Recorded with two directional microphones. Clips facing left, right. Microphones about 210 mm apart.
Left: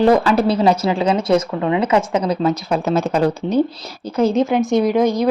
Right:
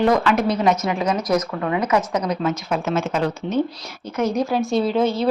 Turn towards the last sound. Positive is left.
turn(degrees=15)  # may be behind; listen again after turning